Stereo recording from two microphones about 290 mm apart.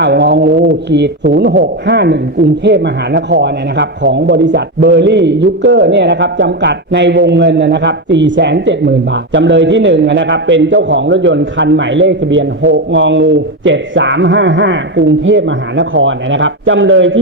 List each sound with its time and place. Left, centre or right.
0.1 s speech: right